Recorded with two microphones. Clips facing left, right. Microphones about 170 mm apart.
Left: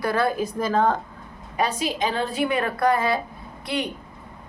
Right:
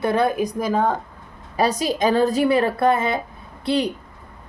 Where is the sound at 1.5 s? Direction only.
40° right (ahead or behind).